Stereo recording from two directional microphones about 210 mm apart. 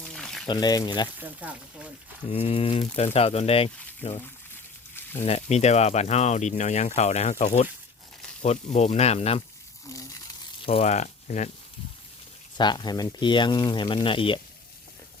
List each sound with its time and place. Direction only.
0.0 s pour: centre (ahead or behind)
0.4 s speech: 20° left (ahead or behind)
1.2 s speech: 5° right (ahead or behind)
2.3 s speech: 25° left (ahead or behind)
5.2 s speech: 30° left (ahead or behind)
9.8 s a sound: 15° left (ahead or behind)
10.7 s speech: 30° left (ahead or behind)
12.5 s speech: 20° left (ahead or behind)